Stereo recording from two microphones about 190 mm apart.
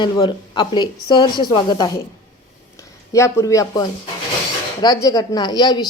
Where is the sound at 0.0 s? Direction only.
25° left (ahead or behind).